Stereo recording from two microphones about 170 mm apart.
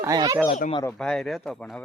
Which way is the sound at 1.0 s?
5° left (ahead or behind).